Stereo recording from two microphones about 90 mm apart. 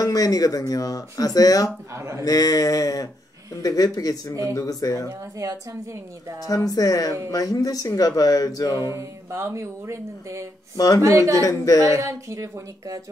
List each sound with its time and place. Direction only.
0.0 s speech: 45° left (ahead or behind)
2.0 s speech: 30° right (ahead or behind)
2.2 s speech: 45° left (ahead or behind)
5.4 s speech: 40° right (ahead or behind)
6.4 s speech: 40° left (ahead or behind)
8.9 s speech: 30° right (ahead or behind)
11.4 s speech: 40° left (ahead or behind)
11.8 s speech: 35° right (ahead or behind)